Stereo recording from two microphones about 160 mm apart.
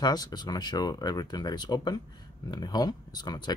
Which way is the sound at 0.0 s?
25° left (ahead or behind).